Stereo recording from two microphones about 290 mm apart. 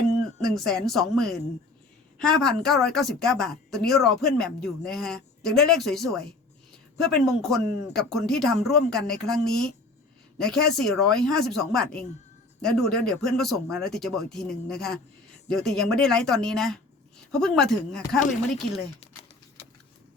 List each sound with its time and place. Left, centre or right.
0.4 s a woman's voice: centre